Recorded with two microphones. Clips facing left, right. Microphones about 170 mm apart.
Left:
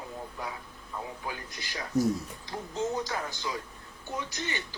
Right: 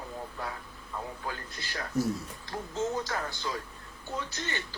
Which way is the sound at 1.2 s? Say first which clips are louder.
Even; 15° left (ahead or behind).